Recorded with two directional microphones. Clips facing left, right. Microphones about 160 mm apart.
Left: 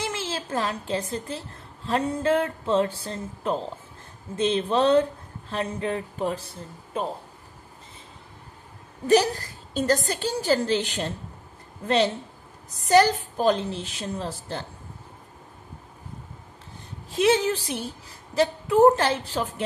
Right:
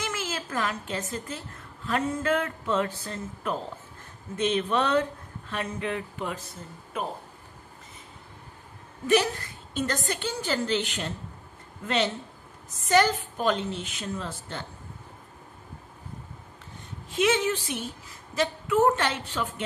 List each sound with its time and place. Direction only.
0.0 s a woman's voice: 30° left (ahead or behind)
9.0 s a woman's voice: 40° left (ahead or behind)
17.1 s a woman's voice: 35° left (ahead or behind)